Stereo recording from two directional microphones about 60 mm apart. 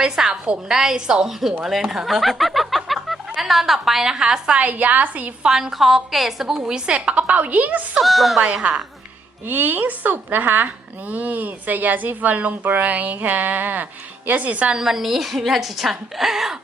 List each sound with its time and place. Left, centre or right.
0.0 s a woman's voice: centre; by 5.3 s right
5.4 s a woman's voice: centre
7.9 s a woman's voice: centre
9.5 s a woman's voice: right
14.7 s a woman's voice: centre